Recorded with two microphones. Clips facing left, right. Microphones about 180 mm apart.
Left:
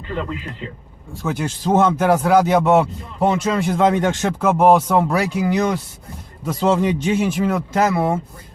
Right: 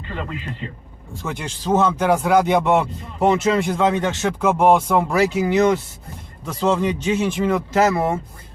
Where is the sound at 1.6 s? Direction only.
10° left (ahead or behind).